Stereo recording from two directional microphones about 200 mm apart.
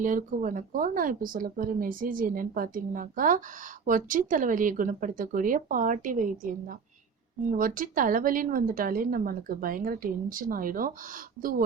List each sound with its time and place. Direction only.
0.0 s speech: 40° right (ahead or behind)